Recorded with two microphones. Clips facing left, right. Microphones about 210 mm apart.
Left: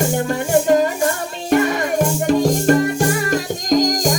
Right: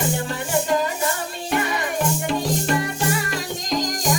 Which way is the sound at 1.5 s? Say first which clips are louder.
Left 8 dB; 45° left (ahead or behind).